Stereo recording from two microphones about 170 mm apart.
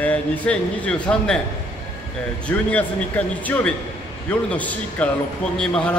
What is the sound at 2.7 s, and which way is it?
A man's voice, 10° left (ahead or behind).